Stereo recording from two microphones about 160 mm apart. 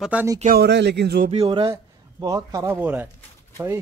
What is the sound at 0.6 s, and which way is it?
Speech, 90° right.